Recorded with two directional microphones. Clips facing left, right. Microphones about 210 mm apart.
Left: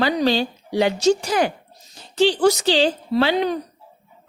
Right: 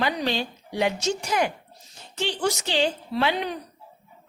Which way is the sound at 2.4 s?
35° left (ahead or behind).